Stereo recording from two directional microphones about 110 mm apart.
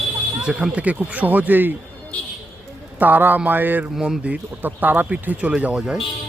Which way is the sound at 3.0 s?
15° right (ahead or behind).